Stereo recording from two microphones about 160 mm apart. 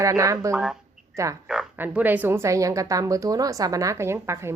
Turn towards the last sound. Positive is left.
turn(degrees=-15)  # may be behind; listen again after turning